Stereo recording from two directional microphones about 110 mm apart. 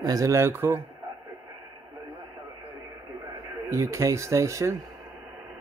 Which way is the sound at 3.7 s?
25° right (ahead or behind).